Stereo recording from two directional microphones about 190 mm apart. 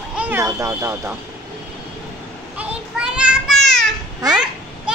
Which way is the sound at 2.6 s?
5° right (ahead or behind).